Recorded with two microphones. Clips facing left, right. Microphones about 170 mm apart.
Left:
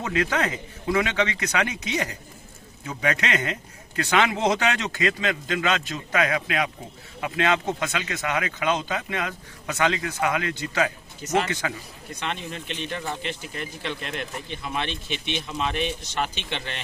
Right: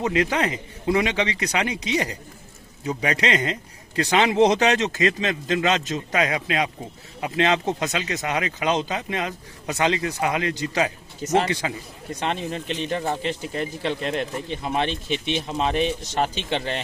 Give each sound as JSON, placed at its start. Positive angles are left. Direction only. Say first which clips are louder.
{"t": 0.0, "sound": "a man's voice", "louder": "right 3 dB", "side_deg": -20}
{"t": 7.9, "sound": "speech", "louder": "right 2 dB", "side_deg": -35}
{"t": 10.5, "sound": "speech", "louder": "right 2 dB", "side_deg": -40}